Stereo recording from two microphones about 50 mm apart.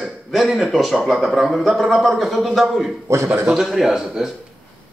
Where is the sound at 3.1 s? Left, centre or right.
Right.